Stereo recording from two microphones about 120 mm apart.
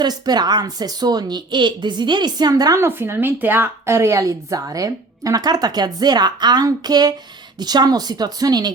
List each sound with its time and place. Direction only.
0.0 s speech: 35° right (ahead or behind)
2.8 s speech: 20° right (ahead or behind)